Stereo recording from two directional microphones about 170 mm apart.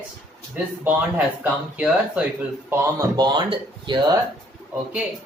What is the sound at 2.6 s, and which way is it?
Speech, 15° right (ahead or behind).